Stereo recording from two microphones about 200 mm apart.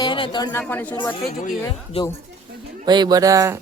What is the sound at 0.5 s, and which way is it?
Speech, 10° left (ahead or behind).